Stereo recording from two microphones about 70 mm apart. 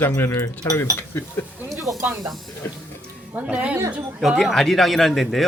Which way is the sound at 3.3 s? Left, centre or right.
Centre.